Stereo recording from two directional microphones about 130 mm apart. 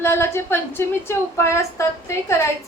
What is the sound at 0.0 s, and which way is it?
A woman's voice, 20° left (ahead or behind).